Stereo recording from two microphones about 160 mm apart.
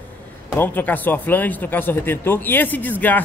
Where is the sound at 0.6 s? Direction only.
10° left (ahead or behind).